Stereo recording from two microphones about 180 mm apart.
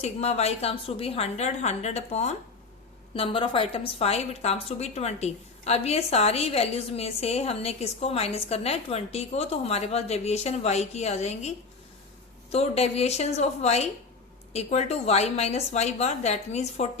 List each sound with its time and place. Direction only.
0.0 s a woman's voice: 35° left (ahead or behind)